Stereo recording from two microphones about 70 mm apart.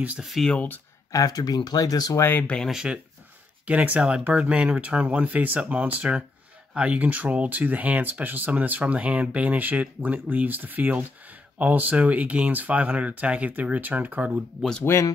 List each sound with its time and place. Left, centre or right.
0.2 s speech: centre
1.1 s speech: left
2.4 s speech: centre
2.7 s speech: centre
14.9 s speech: left